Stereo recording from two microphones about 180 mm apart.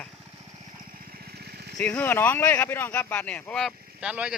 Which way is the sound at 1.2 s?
65° right (ahead or behind).